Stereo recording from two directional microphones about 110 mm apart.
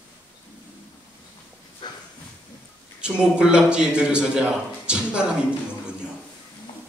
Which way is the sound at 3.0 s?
10° right (ahead or behind).